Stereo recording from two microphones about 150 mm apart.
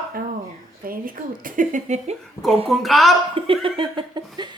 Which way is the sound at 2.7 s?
Centre (ahead or behind).